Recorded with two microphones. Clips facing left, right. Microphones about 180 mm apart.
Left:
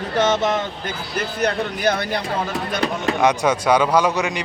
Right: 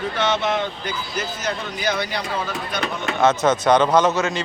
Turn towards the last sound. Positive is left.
turn(degrees=15)  # may be behind; listen again after turning